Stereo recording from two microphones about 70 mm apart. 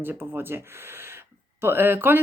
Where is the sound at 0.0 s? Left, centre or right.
Right.